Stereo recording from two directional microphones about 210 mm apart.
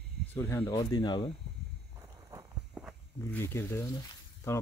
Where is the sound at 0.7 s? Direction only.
20° left (ahead or behind).